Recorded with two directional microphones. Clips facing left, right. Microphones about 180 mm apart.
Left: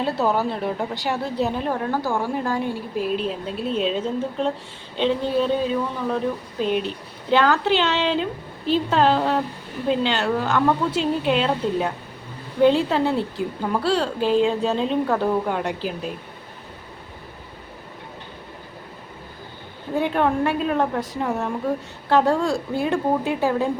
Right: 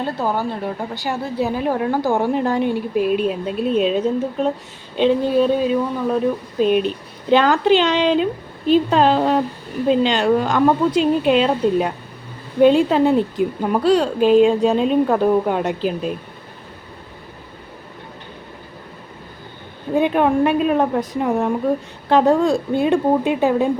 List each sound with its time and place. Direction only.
0.3 s a woman's voice: centre (ahead or behind); by 16.1 s 20° right (ahead or behind)
20.0 s a woman's voice: 15° right (ahead or behind)